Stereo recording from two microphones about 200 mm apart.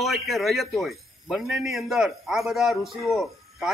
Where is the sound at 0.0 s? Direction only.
Centre (ahead or behind).